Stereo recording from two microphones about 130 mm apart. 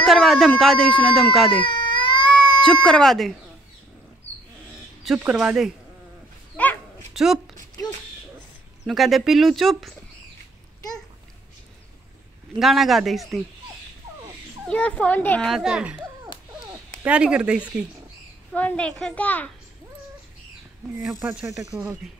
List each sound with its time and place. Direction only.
0.0 s a sound: centre (ahead or behind)
0.6 s speech: 5° left (ahead or behind)
1.6 s baby cry: 40° left (ahead or behind)
2.6 s speech: 5° left (ahead or behind)
5.0 s speech: 5° right (ahead or behind)
6.5 s dog: 10° left (ahead or behind)
7.2 s speech: centre (ahead or behind)
8.8 s speech: centre (ahead or behind)
12.5 s speech: centre (ahead or behind)
14.7 s a child's voice: 10° left (ahead or behind)
15.5 s speech: 5° right (ahead or behind)
18.5 s a child's voice: 10° left (ahead or behind)
21.3 s speech: 5° right (ahead or behind)